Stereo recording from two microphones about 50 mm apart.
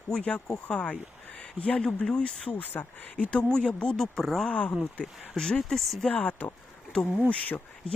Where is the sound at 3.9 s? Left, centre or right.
Centre.